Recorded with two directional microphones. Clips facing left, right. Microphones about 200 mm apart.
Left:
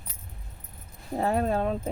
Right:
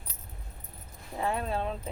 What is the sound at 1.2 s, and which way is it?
Speech, 40° left (ahead or behind).